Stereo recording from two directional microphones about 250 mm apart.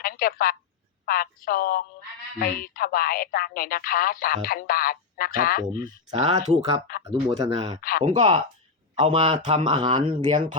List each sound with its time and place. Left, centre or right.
0.0 s telephone: left
1.0 s speech: left
5.8 s speech: right
7.8 s speech: left
8.0 s speech: right